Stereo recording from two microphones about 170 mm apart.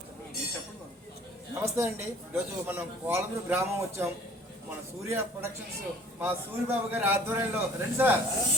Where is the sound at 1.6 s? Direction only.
15° right (ahead or behind).